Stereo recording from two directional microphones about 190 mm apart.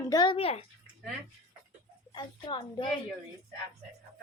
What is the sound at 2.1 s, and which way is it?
Speech, 25° left (ahead or behind).